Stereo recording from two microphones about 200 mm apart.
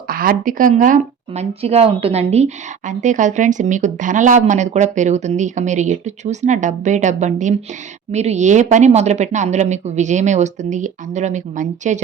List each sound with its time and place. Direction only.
0.1 s speech: 45° right (ahead or behind)